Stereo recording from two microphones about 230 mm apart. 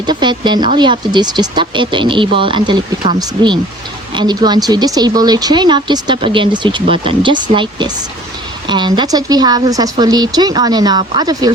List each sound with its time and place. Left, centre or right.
0.0 s speech: centre